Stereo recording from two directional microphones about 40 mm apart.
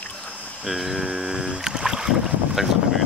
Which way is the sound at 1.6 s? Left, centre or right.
Centre.